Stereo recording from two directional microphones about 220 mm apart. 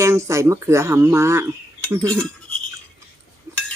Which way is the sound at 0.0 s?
15° right (ahead or behind).